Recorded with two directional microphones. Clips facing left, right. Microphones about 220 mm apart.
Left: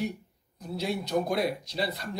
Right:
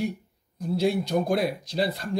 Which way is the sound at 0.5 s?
30° right (ahead or behind).